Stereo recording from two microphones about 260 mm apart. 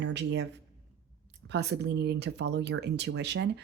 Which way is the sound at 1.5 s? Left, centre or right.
Right.